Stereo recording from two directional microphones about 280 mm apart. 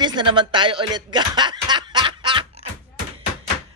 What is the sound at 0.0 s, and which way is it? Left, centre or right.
Speech, centre.